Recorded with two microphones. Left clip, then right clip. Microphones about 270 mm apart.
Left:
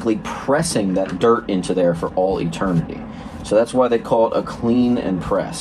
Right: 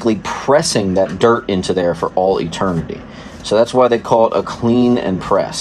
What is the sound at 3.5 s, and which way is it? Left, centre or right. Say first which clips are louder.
Speech: right 4 dB; right.